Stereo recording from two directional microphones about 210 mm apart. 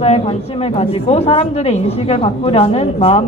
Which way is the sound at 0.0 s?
30° left (ahead or behind).